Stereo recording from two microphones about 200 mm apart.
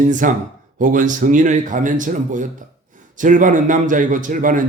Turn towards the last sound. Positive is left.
turn(degrees=-40)  # may be behind; listen again after turning